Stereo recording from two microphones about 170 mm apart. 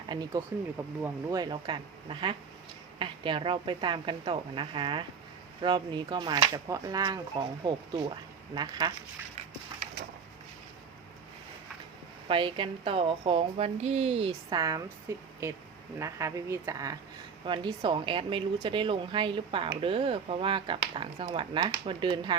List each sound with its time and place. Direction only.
0.1 s speech: 25° right (ahead or behind)
12.3 s a woman's voice: 30° right (ahead or behind)
15.1 s a woman's voice: 15° right (ahead or behind)